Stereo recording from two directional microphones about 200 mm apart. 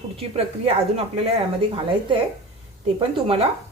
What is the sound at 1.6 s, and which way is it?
Speech, 25° right (ahead or behind).